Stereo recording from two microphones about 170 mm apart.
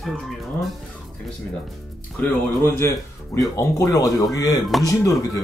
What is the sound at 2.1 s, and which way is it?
Speech, 10° left (ahead or behind).